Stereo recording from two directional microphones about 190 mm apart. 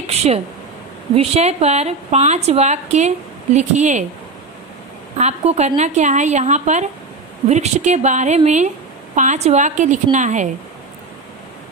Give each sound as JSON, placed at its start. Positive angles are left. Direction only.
{"t": 0.0, "sound": "a sound", "side_deg": -35}
{"t": 1.1, "sound": "a woman's voice", "side_deg": -30}
{"t": 5.1, "sound": "a woman's voice", "side_deg": -35}